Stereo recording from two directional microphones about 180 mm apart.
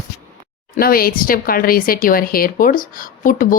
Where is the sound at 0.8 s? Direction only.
55° left (ahead or behind).